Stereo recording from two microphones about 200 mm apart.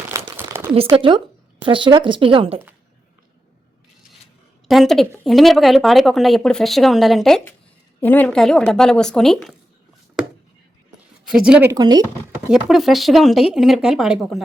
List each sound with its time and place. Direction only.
0.1 s crumpling: 15° right (ahead or behind)
0.9 s speech: 25° right (ahead or behind)
4.7 s speech: centre (ahead or behind)
11.3 s speech: 5° right (ahead or behind)
11.7 s speech: 20° right (ahead or behind)
12.5 s speech: 5° right (ahead or behind)